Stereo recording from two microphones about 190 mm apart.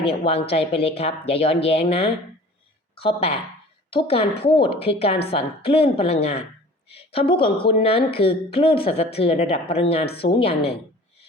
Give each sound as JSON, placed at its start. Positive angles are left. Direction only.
{"t": 0.0, "sound": "a woman's voice", "side_deg": 30}